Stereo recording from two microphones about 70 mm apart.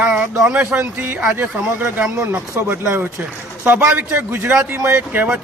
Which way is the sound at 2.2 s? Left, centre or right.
Right.